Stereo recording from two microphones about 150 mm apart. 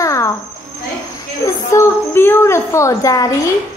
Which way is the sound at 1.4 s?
20° left (ahead or behind).